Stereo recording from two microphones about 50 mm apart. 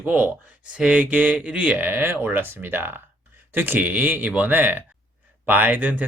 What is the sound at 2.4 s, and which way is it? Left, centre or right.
Speech, right.